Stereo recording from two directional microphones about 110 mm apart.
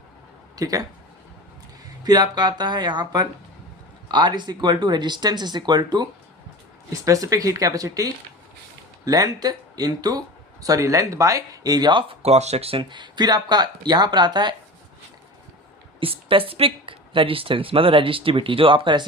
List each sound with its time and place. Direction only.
0.5 s speech: 30° right (ahead or behind)
2.0 s speech: 35° right (ahead or behind)
6.9 s speech: 30° right (ahead or behind); by 12.1 s 45° right (ahead or behind)
12.2 s speech: 80° right
12.8 s speech: 45° right (ahead or behind)
16.0 s speech: 55° right (ahead or behind)